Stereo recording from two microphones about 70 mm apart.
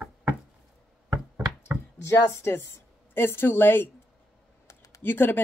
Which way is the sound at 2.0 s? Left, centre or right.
Left.